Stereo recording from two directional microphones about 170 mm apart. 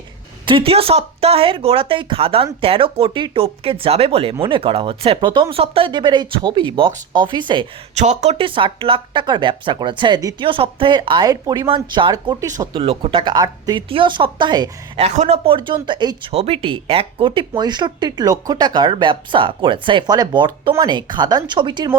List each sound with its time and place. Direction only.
0.4 s speech: 30° right (ahead or behind)
7.9 s speech: 40° right (ahead or behind); by 12.8 s 20° right (ahead or behind)
12.8 s speech: 35° right (ahead or behind)
14.9 s speech: 40° right (ahead or behind)